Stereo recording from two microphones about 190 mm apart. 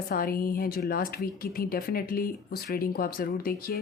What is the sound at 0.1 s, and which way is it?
Speech, 50° left (ahead or behind).